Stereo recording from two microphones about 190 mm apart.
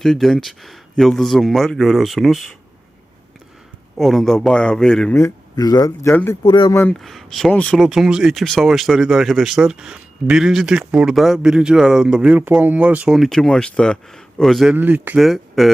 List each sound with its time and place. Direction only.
0.0 s speech: centre (ahead or behind)
3.9 s speech: centre (ahead or behind)
5.1 s speech: 15° left (ahead or behind)
7.0 s speech: centre (ahead or behind)